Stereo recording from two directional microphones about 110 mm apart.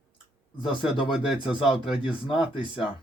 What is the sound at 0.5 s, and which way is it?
Speech, 50° left (ahead or behind).